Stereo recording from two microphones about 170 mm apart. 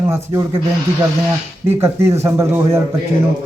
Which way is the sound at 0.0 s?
15° right (ahead or behind).